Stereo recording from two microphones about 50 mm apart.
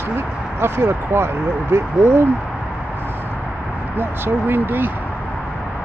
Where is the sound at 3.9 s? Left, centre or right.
Right.